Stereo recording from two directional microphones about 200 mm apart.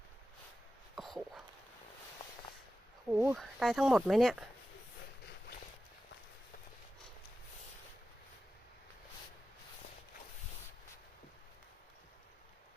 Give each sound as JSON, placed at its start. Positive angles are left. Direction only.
{"t": 0.9, "sound": "a sound", "side_deg": 0}
{"t": 3.1, "sound": "speech", "side_deg": -15}
{"t": 3.3, "sound": "speech", "side_deg": 0}